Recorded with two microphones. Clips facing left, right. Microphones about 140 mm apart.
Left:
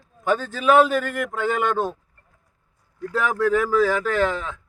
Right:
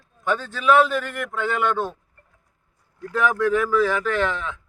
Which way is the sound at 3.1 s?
35° left (ahead or behind).